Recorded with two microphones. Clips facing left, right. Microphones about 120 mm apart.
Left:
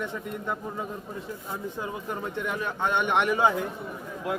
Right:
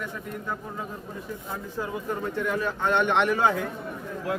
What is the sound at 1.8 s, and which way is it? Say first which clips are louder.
A man's voice: right 6 dB; 20° left (ahead or behind).